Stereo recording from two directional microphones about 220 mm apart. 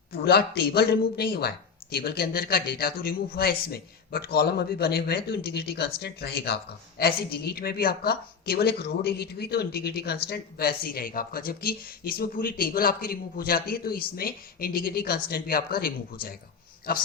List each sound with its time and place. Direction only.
0.1 s a woman's voice: 45° left (ahead or behind)